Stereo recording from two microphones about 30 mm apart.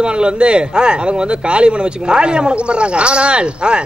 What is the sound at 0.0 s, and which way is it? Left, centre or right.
Speech, right.